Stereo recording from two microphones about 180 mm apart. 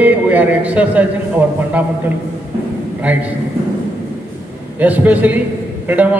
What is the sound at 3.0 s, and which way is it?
Speech, 10° right (ahead or behind).